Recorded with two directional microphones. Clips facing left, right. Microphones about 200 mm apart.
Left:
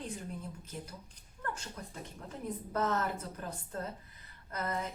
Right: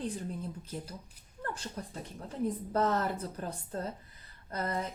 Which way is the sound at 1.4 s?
35° right (ahead or behind).